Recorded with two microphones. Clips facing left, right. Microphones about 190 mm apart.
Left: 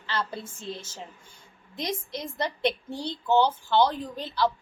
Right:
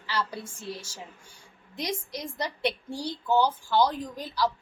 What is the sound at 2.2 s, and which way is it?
A woman's voice, 25° left (ahead or behind).